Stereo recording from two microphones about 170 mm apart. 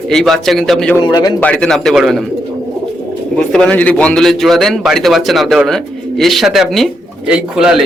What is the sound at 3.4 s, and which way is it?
Speech, 5° left (ahead or behind).